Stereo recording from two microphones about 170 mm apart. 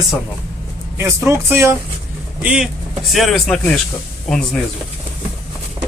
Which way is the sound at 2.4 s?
5° right (ahead or behind).